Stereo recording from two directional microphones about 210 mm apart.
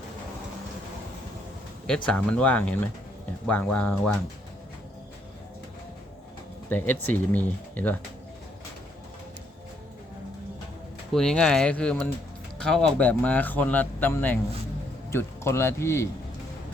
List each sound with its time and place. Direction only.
2.0 s speech: 5° left (ahead or behind)
6.7 s speech: 10° left (ahead or behind)
11.1 s speech: centre (ahead or behind)